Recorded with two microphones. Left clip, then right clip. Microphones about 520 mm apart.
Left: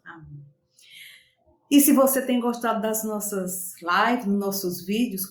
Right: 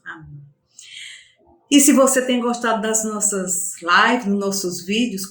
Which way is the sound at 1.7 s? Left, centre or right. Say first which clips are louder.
Right 4 dB; left.